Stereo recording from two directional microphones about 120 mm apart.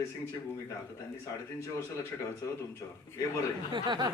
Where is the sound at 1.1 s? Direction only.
25° left (ahead or behind).